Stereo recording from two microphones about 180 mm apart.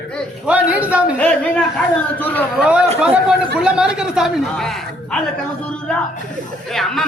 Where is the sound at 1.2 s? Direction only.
5° left (ahead or behind).